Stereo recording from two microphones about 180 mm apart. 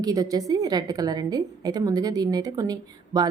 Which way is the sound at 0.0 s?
20° right (ahead or behind).